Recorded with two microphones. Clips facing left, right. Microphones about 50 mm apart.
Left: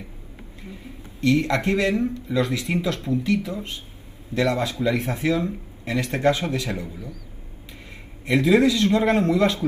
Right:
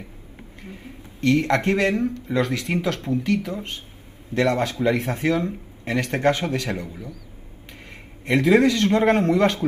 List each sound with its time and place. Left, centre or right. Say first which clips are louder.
1.2 s a man's voice: right 1 dB; right